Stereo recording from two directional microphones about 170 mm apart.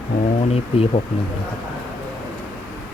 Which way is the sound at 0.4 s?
35° left (ahead or behind).